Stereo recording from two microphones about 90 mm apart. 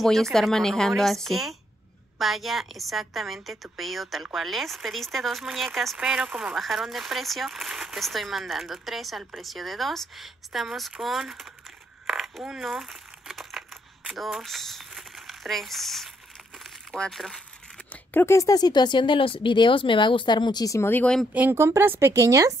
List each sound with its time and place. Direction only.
0.0 s speech: 5° left (ahead or behind)
5.9 s speech: 10° right (ahead or behind)
12.1 s crumpling: 5° right (ahead or behind)
18.1 s speech: 30° left (ahead or behind)
18.5 s speech: 50° left (ahead or behind)
20.6 s speech: 35° left (ahead or behind)
20.9 s speech: 15° left (ahead or behind)
21.3 s speech: 20° right (ahead or behind)
21.5 s speech: 30° right (ahead or behind)